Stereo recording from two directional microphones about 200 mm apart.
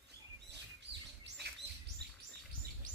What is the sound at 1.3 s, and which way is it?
Chirp, 60° right (ahead or behind).